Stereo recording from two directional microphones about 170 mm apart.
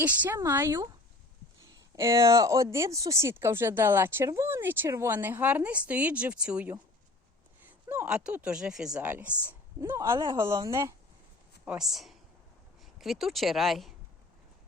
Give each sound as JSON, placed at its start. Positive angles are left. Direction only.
{"t": 0.0, "sound": "speech", "side_deg": -10}
{"t": 2.0, "sound": "speech", "side_deg": -20}
{"t": 11.6, "sound": "speech", "side_deg": -5}